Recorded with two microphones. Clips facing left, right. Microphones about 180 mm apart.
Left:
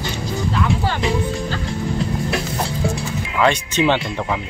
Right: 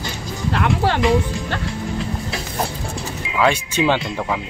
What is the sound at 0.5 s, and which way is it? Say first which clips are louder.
Music: right 4 dB; 70° right (ahead or behind).